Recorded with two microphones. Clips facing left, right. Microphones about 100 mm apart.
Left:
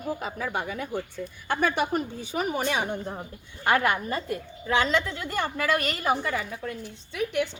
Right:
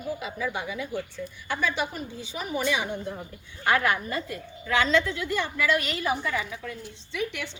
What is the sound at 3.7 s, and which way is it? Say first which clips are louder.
A woman's voice: left 1 dB; 35° left (ahead or behind).